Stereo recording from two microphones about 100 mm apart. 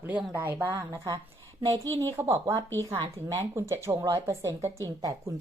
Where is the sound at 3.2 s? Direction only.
20° left (ahead or behind).